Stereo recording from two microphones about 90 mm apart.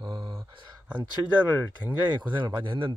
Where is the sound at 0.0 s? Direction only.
55° right (ahead or behind).